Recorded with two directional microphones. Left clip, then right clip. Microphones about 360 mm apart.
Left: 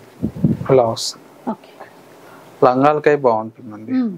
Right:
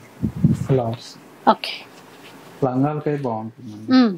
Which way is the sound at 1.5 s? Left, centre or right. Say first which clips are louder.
Right 11 dB; centre.